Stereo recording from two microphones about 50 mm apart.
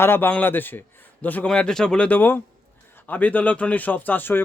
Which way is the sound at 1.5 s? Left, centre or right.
Centre.